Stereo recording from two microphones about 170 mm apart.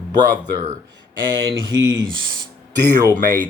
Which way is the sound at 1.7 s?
25° right (ahead or behind).